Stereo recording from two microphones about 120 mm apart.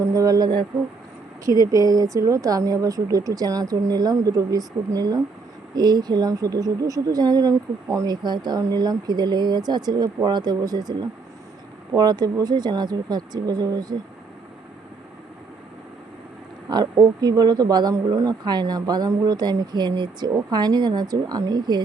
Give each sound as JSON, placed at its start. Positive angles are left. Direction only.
{"t": 0.0, "sound": "speech", "side_deg": -30}
{"t": 16.6, "sound": "speech", "side_deg": -35}